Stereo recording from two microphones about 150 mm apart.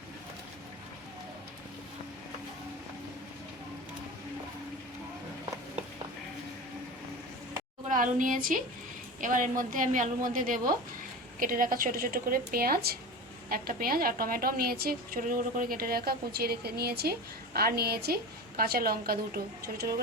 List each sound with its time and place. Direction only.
7.9 s a woman's voice: 60° right (ahead or behind); by 13.0 s 90° right
13.5 s a woman's voice: 75° right (ahead or behind)